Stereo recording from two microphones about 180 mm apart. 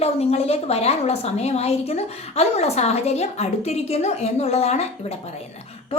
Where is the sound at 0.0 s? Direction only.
35° left (ahead or behind).